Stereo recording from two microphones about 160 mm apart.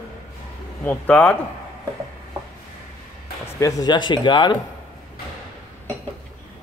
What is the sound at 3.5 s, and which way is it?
Speech, 20° left (ahead or behind).